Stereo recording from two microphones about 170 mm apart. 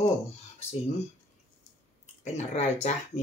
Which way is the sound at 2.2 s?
40° left (ahead or behind).